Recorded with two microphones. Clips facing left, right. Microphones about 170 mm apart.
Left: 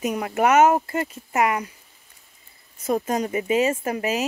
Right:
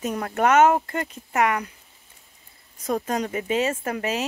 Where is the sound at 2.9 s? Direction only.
5° left (ahead or behind).